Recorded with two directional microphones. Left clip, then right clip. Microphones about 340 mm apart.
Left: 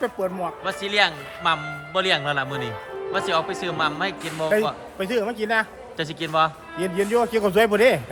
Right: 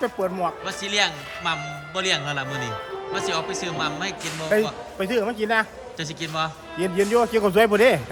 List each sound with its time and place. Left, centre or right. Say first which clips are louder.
0.0 s a man's voice: right 1 dB; centre